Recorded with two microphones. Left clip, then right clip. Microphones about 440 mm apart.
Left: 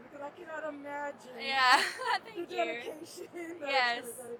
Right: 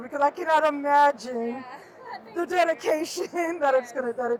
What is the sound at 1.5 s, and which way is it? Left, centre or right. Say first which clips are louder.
Speech: left 10 dB; left.